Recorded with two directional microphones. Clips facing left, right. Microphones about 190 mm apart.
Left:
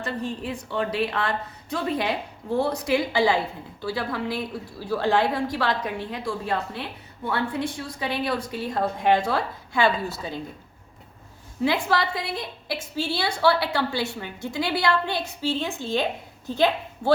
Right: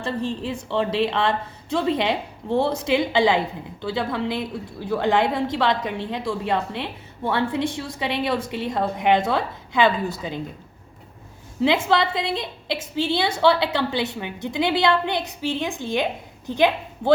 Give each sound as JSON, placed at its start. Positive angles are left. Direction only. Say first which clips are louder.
{"t": 0.0, "sound": "a woman's voice", "louder": "right 3 dB", "side_deg": -25}
{"t": 11.6, "sound": "a woman's voice", "louder": "right 4 dB", "side_deg": -20}